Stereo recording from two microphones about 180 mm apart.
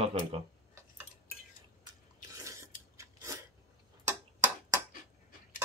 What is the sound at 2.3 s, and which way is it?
Scissors, 15° right (ahead or behind).